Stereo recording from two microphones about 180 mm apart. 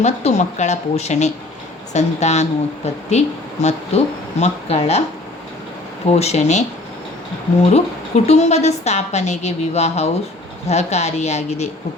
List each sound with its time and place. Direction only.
0.0 s a woman's voice: 40° left (ahead or behind)
6.1 s a woman's voice: 35° left (ahead or behind)
7.7 s a woman's voice: 35° left (ahead or behind)